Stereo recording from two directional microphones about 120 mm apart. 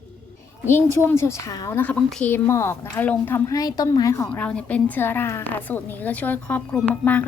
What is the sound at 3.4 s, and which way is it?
Speech, 30° left (ahead or behind).